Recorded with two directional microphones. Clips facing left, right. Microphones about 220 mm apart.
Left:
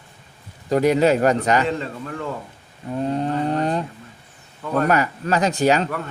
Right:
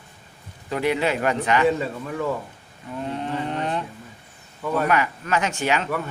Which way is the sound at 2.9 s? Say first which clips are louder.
Left 6 dB; 35° left (ahead or behind).